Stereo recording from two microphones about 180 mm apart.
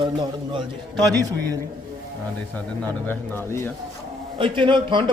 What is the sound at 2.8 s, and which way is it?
Speech, 10° left (ahead or behind).